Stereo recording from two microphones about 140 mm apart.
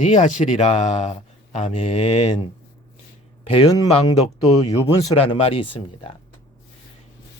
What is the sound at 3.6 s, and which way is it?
Speech, 25° left (ahead or behind).